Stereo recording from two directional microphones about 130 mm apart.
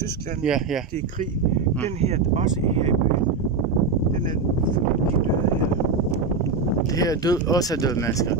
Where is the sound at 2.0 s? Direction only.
55° right (ahead or behind).